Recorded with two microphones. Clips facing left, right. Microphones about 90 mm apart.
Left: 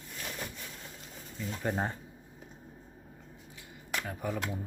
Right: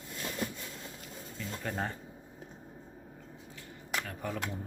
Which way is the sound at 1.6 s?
20° left (ahead or behind).